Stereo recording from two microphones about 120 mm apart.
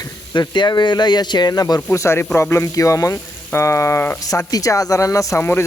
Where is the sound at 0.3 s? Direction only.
40° left (ahead or behind).